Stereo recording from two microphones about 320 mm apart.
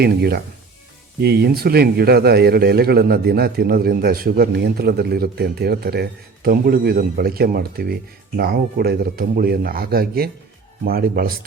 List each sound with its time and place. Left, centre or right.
0.0 s a man's voice: right